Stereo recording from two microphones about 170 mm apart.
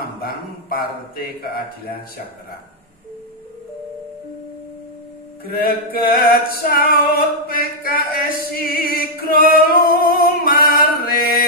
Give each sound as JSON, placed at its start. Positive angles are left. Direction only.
{"t": 0.0, "sound": "music", "side_deg": 65}
{"t": 5.4, "sound": "music", "side_deg": 65}
{"t": 10.7, "sound": "chant", "side_deg": 60}